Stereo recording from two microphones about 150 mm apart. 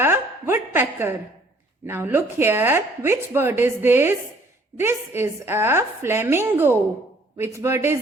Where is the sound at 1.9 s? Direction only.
15° right (ahead or behind).